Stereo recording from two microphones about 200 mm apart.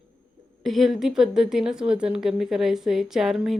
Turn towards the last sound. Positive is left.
turn(degrees=0)  # may be behind; listen again after turning